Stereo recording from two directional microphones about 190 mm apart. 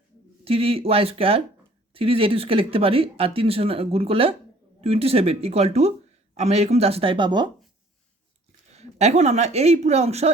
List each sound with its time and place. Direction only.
0.4 s speech: 30° right (ahead or behind)
8.7 s speech: 35° right (ahead or behind)